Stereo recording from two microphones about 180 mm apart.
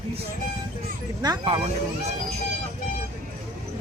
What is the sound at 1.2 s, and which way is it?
Speech, 20° right (ahead or behind).